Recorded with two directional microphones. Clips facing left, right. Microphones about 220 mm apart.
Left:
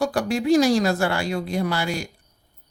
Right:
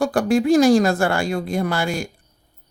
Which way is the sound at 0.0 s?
50° right (ahead or behind).